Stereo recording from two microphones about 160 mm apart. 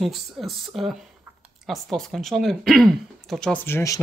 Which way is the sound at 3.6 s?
15° left (ahead or behind).